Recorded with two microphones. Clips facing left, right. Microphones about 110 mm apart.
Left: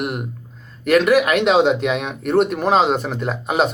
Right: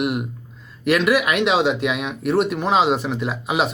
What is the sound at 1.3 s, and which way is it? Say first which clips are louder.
Speech: left 3 dB; centre (ahead or behind).